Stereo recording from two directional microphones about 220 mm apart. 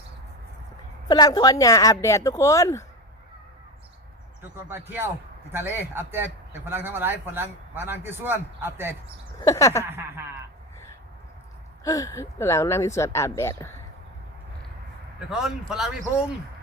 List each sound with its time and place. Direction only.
1.0 s speech: 15° left (ahead or behind)
4.5 s speech: 10° right (ahead or behind)
9.4 s speech: 15° left (ahead or behind)
9.8 s speech: 10° right (ahead or behind)
11.8 s speech: 15° left (ahead or behind)
15.3 s speech: centre (ahead or behind)